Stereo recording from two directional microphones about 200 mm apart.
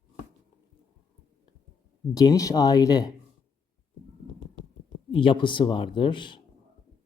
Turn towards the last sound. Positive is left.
turn(degrees=25)  # may be behind; listen again after turning